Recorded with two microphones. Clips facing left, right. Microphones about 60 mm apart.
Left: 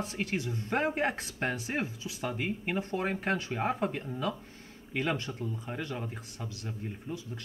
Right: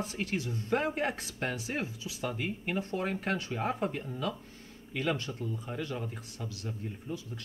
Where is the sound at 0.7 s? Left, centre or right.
Left.